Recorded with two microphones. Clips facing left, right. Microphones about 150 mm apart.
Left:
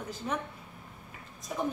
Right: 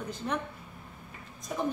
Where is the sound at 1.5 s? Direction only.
Centre (ahead or behind).